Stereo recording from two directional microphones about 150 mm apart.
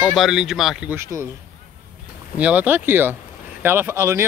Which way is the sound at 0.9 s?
20° right (ahead or behind).